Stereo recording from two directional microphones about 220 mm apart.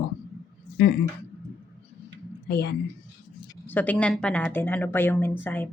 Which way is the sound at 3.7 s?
5° left (ahead or behind).